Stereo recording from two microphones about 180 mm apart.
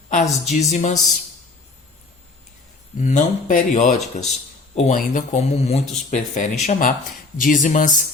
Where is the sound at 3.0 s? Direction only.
45° left (ahead or behind).